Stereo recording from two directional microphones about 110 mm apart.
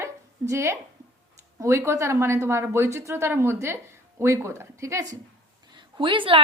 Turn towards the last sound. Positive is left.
turn(degrees=-50)  # may be behind; listen again after turning